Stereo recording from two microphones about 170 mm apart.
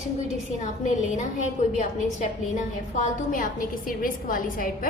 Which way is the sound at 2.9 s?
45° left (ahead or behind).